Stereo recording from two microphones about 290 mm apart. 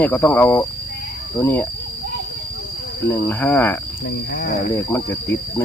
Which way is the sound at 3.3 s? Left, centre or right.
Centre.